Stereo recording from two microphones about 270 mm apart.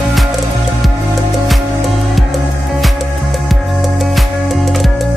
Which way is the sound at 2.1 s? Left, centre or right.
Centre.